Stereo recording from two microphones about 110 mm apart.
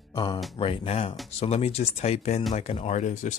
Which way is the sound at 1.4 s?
70° left (ahead or behind).